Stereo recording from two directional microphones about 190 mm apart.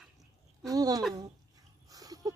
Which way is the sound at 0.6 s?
20° right (ahead or behind).